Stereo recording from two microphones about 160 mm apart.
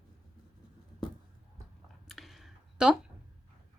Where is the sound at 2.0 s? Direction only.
Centre (ahead or behind).